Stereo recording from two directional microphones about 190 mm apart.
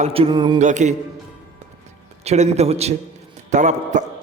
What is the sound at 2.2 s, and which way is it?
A man's voice, 35° right (ahead or behind).